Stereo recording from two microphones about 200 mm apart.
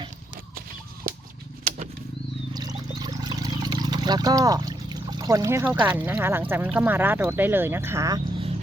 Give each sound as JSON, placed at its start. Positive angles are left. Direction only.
{"t": 2.5, "sound": "speech", "side_deg": -20}